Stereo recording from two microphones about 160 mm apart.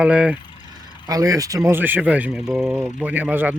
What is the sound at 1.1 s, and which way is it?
Speech, 20° right (ahead or behind).